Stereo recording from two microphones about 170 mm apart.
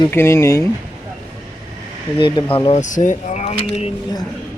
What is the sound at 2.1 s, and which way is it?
Speech, 30° left (ahead or behind).